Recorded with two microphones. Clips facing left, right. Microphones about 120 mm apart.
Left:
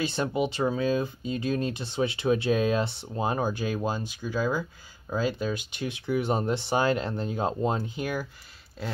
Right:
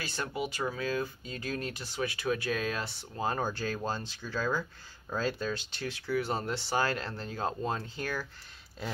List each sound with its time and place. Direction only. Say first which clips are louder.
0.0 s speech: left 8 dB; 20° left (ahead or behind)
8.8 s speech: left 3 dB; centre (ahead or behind)